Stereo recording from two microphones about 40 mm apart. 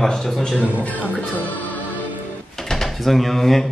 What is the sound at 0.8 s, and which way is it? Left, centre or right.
Speech, left.